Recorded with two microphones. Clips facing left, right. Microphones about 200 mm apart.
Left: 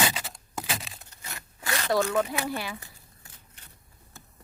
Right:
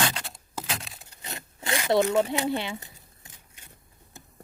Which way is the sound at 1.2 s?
20° right (ahead or behind).